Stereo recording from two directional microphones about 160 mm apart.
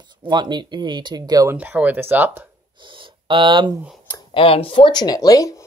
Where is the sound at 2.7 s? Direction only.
30° right (ahead or behind).